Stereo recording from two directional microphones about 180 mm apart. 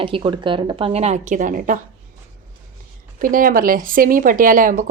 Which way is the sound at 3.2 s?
50° right (ahead or behind).